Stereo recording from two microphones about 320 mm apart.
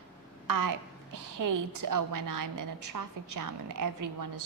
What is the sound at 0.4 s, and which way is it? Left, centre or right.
A woman's voice, right.